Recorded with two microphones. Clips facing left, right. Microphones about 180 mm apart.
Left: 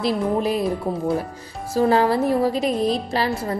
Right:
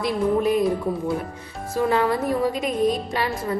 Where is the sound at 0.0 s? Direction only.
35° left (ahead or behind).